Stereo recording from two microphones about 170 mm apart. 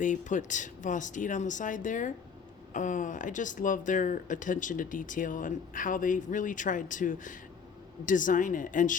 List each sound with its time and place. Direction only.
0.0 s speech: 50° left (ahead or behind)